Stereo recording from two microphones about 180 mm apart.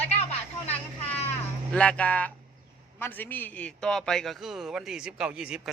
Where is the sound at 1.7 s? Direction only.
5° left (ahead or behind).